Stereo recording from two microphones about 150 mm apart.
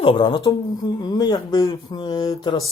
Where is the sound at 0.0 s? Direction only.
35° left (ahead or behind).